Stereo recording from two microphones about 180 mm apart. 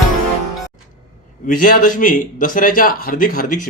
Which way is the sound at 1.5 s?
55° left (ahead or behind).